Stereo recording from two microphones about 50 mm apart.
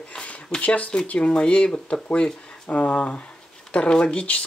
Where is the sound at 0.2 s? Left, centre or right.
Left.